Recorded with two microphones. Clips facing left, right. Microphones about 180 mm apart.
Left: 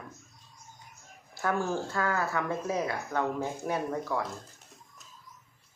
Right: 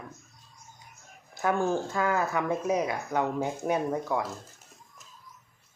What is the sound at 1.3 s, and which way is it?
Speech, 15° right (ahead or behind).